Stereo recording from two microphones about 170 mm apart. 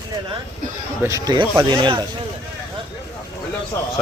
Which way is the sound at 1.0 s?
20° right (ahead or behind).